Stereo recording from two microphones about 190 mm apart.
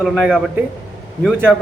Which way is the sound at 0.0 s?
Centre (ahead or behind).